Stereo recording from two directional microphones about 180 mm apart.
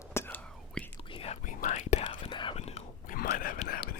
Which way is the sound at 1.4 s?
45° left (ahead or behind).